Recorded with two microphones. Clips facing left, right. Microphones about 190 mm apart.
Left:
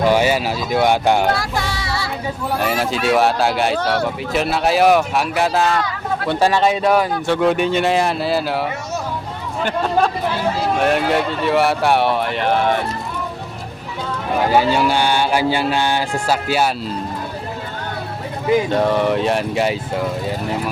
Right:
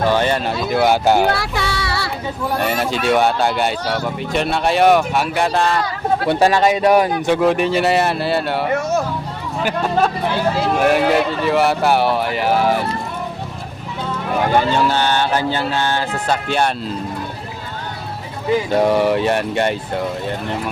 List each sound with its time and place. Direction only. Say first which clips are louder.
0.0 s speech: left 1 dB; 10° left (ahead or behind)
1.4 s music: right 1 dB; 65° right (ahead or behind)
2.6 s speech: even; centre (ahead or behind)
6.2 s speech: right 1 dB; 10° right (ahead or behind)
7.3 s speech: left 1 dB; centre (ahead or behind)
14.5 s speech: left 1 dB; 10° left (ahead or behind)
18.8 s speech: right 2 dB; 10° right (ahead or behind)